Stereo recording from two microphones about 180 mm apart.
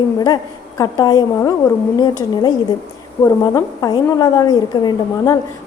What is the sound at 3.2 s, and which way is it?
A woman's voice, 20° left (ahead or behind).